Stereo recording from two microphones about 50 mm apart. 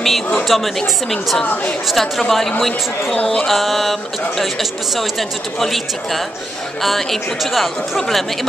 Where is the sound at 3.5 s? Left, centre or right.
Centre.